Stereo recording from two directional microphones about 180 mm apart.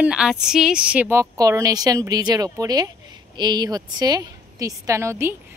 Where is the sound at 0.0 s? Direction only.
5° right (ahead or behind).